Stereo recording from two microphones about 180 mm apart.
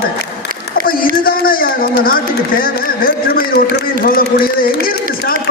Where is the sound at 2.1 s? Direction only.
55° left (ahead or behind).